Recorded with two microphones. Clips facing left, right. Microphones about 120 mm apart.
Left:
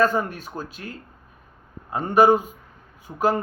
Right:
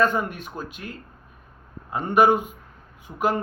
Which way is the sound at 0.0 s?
35° left (ahead or behind).